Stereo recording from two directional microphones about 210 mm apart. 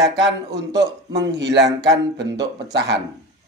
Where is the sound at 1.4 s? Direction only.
55° right (ahead or behind).